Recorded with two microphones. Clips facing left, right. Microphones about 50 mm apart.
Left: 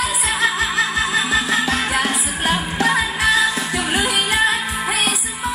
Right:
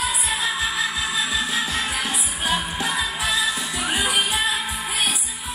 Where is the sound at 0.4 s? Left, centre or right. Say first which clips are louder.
Left 8 dB; left.